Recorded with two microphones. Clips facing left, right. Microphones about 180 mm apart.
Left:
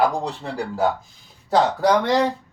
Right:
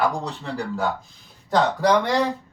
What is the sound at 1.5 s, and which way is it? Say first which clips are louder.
Speech: left 1 dB; 5° left (ahead or behind).